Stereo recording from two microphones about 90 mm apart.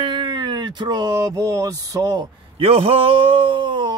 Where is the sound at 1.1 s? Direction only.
40° right (ahead or behind).